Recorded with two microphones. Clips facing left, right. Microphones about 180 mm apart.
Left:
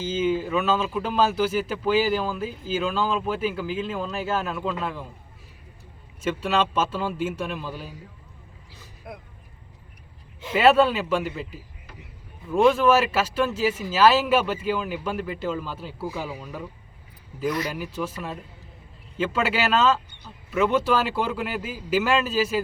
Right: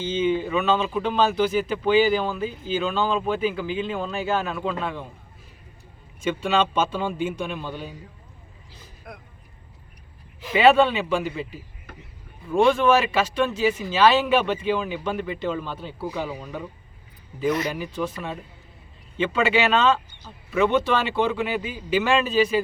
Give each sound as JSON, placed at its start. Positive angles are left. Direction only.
{"t": 0.0, "sound": "speech", "side_deg": 5}
{"t": 6.2, "sound": "speech", "side_deg": 0}
{"t": 9.1, "sound": "speech", "side_deg": 25}
{"t": 10.5, "sound": "speech", "side_deg": 0}
{"t": 17.7, "sound": "speech", "side_deg": 5}